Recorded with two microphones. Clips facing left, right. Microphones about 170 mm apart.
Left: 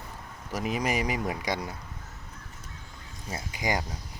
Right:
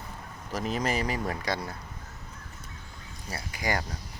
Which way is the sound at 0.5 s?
10° left (ahead or behind).